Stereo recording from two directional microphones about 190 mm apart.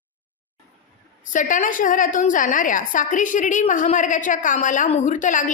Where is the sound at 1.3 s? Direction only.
45° left (ahead or behind).